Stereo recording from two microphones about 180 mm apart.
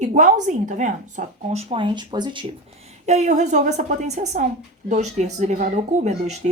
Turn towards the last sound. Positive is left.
turn(degrees=-40)  # may be behind; listen again after turning